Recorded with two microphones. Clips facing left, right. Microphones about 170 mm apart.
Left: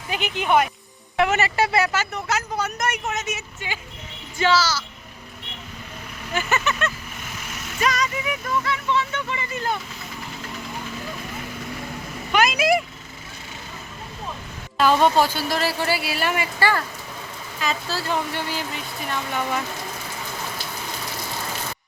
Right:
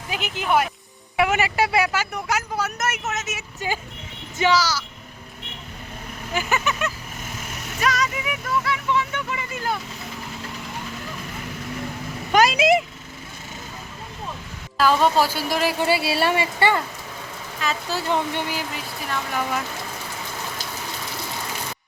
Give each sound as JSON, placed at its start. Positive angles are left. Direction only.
{"t": 0.1, "sound": "speech", "side_deg": 0}
{"t": 3.6, "sound": "speech", "side_deg": -40}
{"t": 4.4, "sound": "speech", "side_deg": -15}
{"t": 6.3, "sound": "speech", "side_deg": -15}
{"t": 7.8, "sound": "speech", "side_deg": 0}
{"t": 12.3, "sound": "speech", "side_deg": -35}
{"t": 14.8, "sound": "speech", "side_deg": 0}
{"t": 17.8, "sound": "speech", "side_deg": -20}
{"t": 19.0, "sound": "speech", "side_deg": 0}